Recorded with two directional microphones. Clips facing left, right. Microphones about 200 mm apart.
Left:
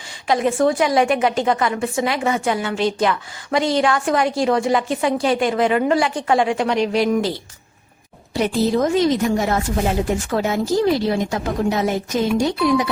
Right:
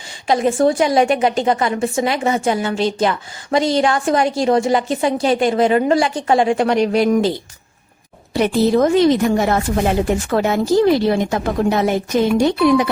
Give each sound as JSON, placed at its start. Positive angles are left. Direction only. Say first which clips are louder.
{"t": 0.3, "sound": "a woman's voice", "louder": "right 2 dB", "side_deg": -30}
{"t": 8.3, "sound": "a woman's voice", "louder": "right 4 dB", "side_deg": -65}